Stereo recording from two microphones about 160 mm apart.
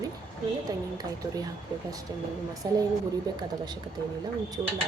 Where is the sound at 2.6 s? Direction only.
25° right (ahead or behind).